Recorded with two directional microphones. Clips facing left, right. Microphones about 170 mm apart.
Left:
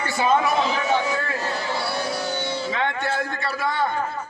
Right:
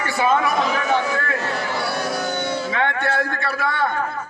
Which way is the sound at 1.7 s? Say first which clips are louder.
Right 2 dB; 25° left (ahead or behind).